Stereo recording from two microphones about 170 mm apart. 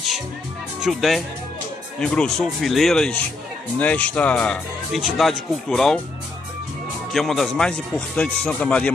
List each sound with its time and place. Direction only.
0.7 s speech: centre (ahead or behind)
7.1 s speech: centre (ahead or behind)